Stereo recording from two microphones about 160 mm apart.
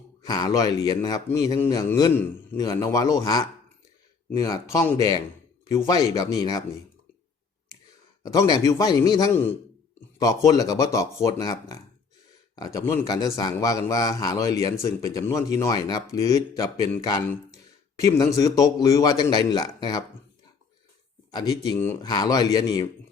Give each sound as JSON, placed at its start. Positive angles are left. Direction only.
{"t": 0.2, "sound": "a man's voice", "side_deg": 25}
{"t": 8.2, "sound": "speech", "side_deg": 25}
{"t": 21.2, "sound": "a sound", "side_deg": 25}
{"t": 22.0, "sound": "speech", "side_deg": 25}